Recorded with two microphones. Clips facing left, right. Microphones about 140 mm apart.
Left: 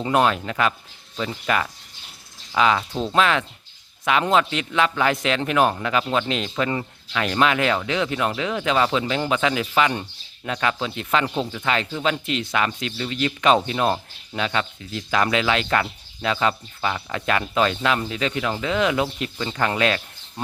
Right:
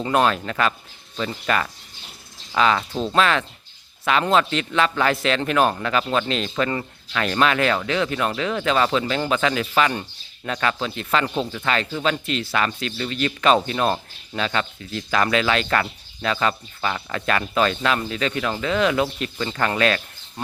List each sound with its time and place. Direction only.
0.0 s a man's voice: 15° left (ahead or behind)
11.3 s speech: 5° left (ahead or behind)
12.0 s a man's voice: 15° left (ahead or behind)